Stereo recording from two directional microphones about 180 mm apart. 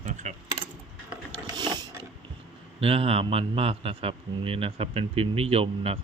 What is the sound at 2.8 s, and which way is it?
A man's voice, 35° right (ahead or behind).